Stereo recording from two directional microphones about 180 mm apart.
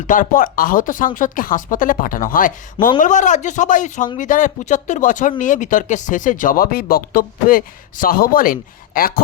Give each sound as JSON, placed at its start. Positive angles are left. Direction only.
{"t": 0.1, "sound": "speech", "side_deg": 50}